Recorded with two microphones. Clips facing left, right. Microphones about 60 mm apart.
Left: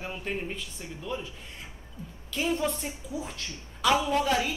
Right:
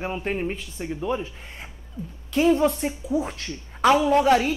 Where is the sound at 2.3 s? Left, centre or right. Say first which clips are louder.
Right 10 dB; right.